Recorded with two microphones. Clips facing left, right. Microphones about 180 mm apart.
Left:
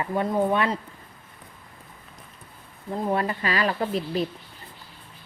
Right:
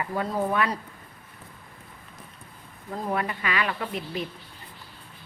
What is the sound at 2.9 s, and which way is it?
Speech, 30° left (ahead or behind).